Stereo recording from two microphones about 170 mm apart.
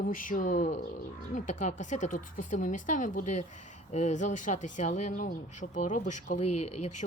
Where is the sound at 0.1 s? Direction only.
50° left (ahead or behind).